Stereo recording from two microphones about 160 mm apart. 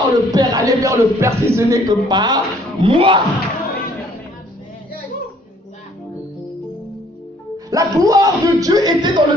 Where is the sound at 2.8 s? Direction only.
35° right (ahead or behind).